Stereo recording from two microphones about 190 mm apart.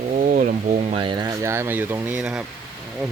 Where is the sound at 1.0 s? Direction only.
25° right (ahead or behind); by 2.4 s 5° right (ahead or behind).